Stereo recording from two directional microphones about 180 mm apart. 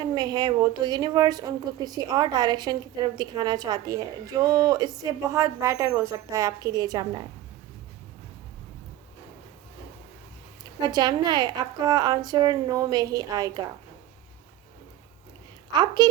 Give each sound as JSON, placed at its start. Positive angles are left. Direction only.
{"t": 0.0, "sound": "speech", "side_deg": -25}
{"t": 10.8, "sound": "speech", "side_deg": -25}
{"t": 16.0, "sound": "speech", "side_deg": -25}